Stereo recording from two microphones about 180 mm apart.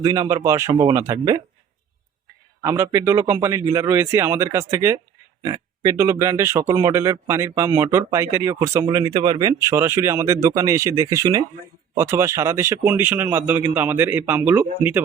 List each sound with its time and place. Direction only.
0.0 s speech: 20° right (ahead or behind)
2.6 s speech: 15° right (ahead or behind)